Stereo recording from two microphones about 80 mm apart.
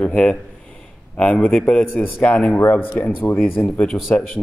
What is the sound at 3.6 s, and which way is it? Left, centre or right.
Speech, centre.